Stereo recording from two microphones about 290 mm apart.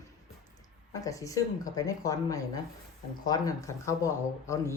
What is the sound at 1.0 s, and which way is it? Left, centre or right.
A woman's voice, centre.